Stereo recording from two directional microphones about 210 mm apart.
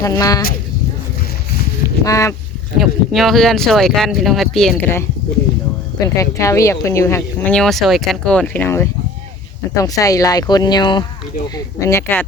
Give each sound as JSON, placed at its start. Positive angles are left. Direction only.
{"t": 0.0, "sound": "speech", "side_deg": 15}
{"t": 2.0, "sound": "speech", "side_deg": 15}
{"t": 2.7, "sound": "speech", "side_deg": 0}
{"t": 6.1, "sound": "speech", "side_deg": 15}